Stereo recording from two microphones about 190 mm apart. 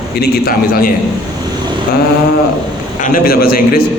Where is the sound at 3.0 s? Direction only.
50° left (ahead or behind).